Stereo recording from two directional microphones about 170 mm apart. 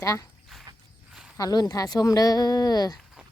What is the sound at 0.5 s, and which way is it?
Mechanisms, centre (ahead or behind).